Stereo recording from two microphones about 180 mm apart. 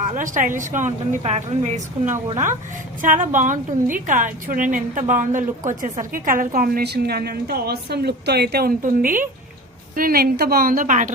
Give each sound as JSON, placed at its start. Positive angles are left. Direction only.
{"t": 0.1, "sound": "a woman's voice", "side_deg": -45}
{"t": 3.0, "sound": "a woman's voice", "side_deg": -45}